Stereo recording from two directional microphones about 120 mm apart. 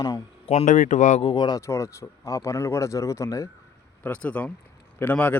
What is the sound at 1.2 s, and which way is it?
Speech, 45° left (ahead or behind).